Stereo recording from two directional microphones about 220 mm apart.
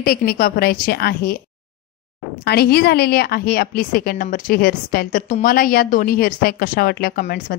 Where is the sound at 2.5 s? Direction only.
45° left (ahead or behind).